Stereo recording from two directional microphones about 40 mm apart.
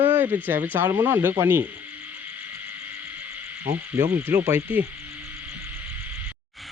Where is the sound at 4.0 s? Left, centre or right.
Right.